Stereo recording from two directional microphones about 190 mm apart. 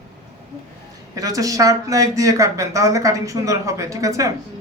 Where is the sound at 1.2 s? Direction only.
20° right (ahead or behind).